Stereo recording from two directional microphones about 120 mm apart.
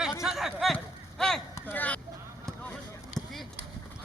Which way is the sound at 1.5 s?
15° left (ahead or behind).